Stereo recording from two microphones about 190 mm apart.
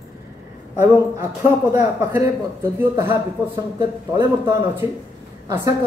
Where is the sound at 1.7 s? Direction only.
15° right (ahead or behind).